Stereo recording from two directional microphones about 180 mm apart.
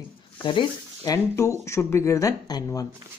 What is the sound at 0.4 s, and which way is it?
Speech, 25° left (ahead or behind).